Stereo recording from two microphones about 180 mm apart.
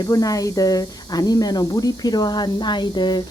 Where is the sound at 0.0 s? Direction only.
20° left (ahead or behind).